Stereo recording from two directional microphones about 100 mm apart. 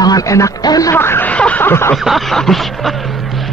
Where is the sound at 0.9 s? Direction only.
20° left (ahead or behind).